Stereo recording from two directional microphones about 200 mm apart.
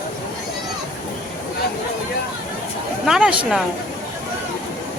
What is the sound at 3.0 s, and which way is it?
Speech, 5° right (ahead or behind).